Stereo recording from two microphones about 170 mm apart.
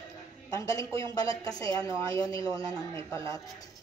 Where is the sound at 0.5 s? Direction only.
20° left (ahead or behind).